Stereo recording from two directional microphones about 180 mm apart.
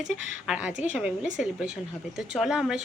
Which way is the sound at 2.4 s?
Centre (ahead or behind).